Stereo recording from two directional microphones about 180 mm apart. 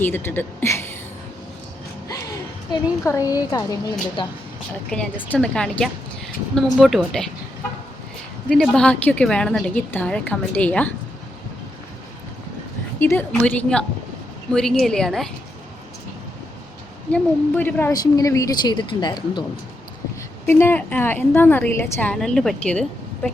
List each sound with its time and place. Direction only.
0.0 s speech: 10° left (ahead or behind)
3.0 s a woman's voice: 15° left (ahead or behind)
4.9 s a woman's voice: 5° left (ahead or behind)
8.4 s a woman's voice: 5° left (ahead or behind)
13.0 s a woman's voice: 10° left (ahead or behind)
17.1 s a woman's voice: 10° left (ahead or behind); by 19.5 s 25° left (ahead or behind)
20.5 s a woman's voice: 10° left (ahead or behind)